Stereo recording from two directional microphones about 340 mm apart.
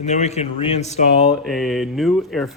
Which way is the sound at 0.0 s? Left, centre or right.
Centre.